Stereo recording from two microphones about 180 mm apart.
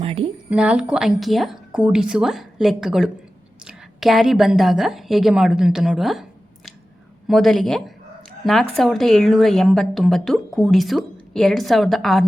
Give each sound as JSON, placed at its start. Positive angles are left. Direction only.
{"t": 0.0, "sound": "speech", "side_deg": -30}
{"t": 0.5, "sound": "a woman's voice", "side_deg": -5}
{"t": 7.3, "sound": "a woman's voice", "side_deg": 0}